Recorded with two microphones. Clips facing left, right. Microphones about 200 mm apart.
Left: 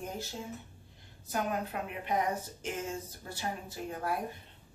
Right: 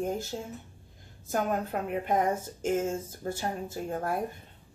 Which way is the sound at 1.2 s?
50° right (ahead or behind).